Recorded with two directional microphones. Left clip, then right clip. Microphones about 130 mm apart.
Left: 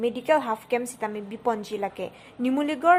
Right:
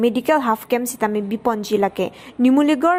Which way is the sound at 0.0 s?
40° right (ahead or behind).